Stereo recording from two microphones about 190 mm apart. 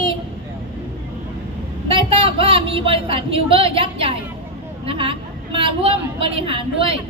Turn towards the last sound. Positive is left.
turn(degrees=-30)  # may be behind; listen again after turning